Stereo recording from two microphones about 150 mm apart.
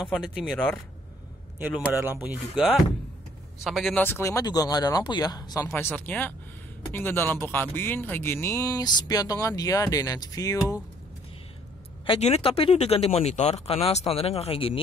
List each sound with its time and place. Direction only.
0.1 s speech: centre (ahead or behind)
1.9 s speech: 15° right (ahead or behind)
3.6 s speech: centre (ahead or behind)
3.9 s speech: 15° left (ahead or behind)
12.1 s speech: 45° left (ahead or behind)